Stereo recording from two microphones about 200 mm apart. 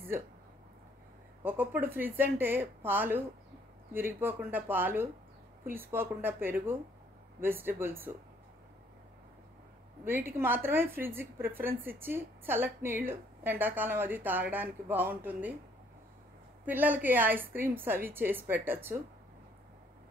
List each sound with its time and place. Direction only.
1.4 s a woman's voice: 10° right (ahead or behind)
10.0 s a woman's voice: 10° right (ahead or behind)
16.6 s a woman's voice: 10° right (ahead or behind)